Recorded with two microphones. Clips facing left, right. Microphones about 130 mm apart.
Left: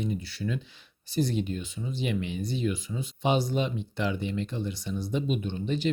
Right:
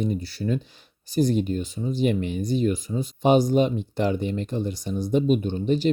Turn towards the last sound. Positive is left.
turn(degrees=-40)  # may be behind; listen again after turning